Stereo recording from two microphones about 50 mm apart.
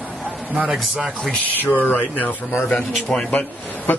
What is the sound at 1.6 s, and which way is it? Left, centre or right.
Speech, left.